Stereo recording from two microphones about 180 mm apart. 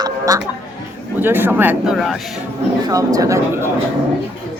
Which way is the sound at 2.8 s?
20° right (ahead or behind).